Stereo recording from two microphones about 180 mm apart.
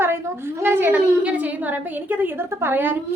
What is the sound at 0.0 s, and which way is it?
A woman's voice, 15° right (ahead or behind).